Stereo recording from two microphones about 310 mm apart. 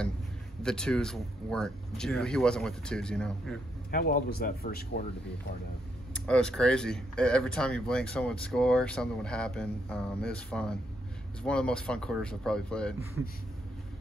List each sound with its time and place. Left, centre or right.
0.6 s speech: centre
3.9 s speech: left
6.1 s speech: centre